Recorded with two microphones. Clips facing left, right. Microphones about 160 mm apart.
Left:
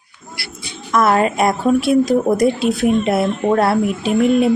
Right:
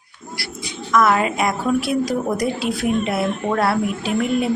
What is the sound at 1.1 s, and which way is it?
Speech, 40° left (ahead or behind).